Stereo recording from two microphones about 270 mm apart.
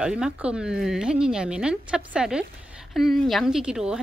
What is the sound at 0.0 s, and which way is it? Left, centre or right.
Speech, centre.